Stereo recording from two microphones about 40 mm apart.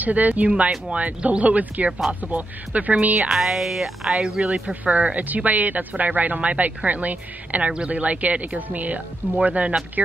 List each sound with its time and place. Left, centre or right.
0.0 s speech: right
3.3 s speech: centre
4.6 s speech: right